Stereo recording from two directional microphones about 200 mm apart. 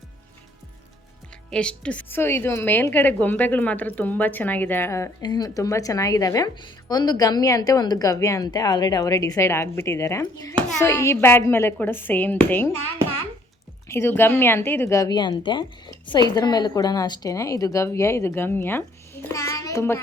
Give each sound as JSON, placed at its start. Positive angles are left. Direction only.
{"t": 1.5, "sound": "a woman's voice", "side_deg": 5}
{"t": 13.8, "sound": "a woman's voice", "side_deg": 10}